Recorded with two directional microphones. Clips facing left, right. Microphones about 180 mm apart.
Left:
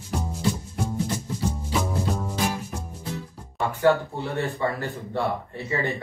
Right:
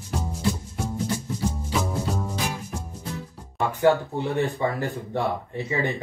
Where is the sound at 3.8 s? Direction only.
15° right (ahead or behind).